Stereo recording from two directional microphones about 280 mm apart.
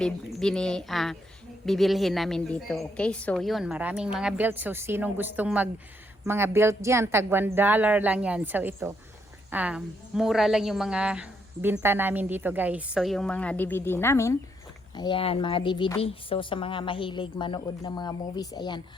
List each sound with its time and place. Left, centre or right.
0.3 s a woman's voice: centre